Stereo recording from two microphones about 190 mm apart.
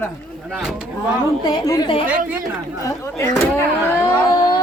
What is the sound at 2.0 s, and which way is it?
Speech, 10° right (ahead or behind).